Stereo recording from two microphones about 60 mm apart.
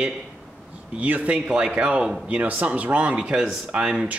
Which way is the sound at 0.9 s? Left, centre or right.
Right.